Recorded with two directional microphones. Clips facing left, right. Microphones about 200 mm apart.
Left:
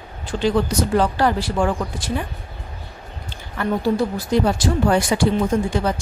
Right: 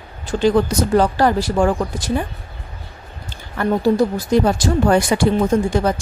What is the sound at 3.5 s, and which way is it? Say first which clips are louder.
Speech: right 4 dB; 45° right (ahead or behind).